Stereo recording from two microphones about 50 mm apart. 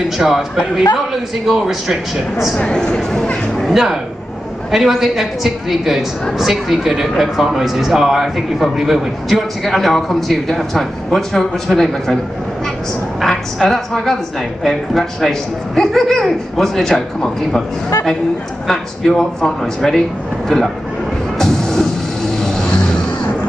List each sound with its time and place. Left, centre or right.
0.2 s speech: centre
2.6 s speech: centre
3.7 s speech: centre
13.2 s a man's voice: centre
18.7 s a man's voice: centre
21.4 s vehicle: centre